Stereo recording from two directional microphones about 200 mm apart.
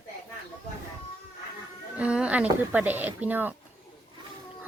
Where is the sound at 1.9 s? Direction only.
5° right (ahead or behind).